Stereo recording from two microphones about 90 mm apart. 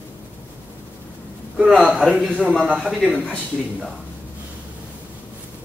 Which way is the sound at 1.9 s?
5° right (ahead or behind).